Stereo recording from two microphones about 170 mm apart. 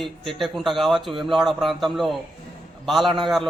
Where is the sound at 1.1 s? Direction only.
30° right (ahead or behind).